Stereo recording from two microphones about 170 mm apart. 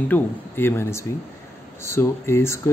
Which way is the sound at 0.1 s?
15° left (ahead or behind).